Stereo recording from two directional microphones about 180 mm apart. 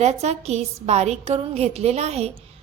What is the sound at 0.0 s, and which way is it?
A woman's voice, 35° right (ahead or behind).